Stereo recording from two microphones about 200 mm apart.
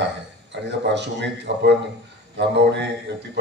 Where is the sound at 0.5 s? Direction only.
60° right (ahead or behind).